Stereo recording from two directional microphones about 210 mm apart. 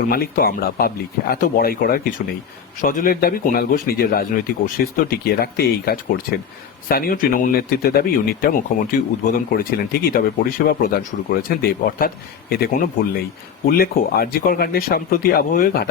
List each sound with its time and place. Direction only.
0.1 s speech: 45° left (ahead or behind)